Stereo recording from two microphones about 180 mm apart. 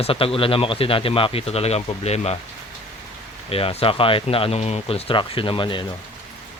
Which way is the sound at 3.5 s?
35° left (ahead or behind).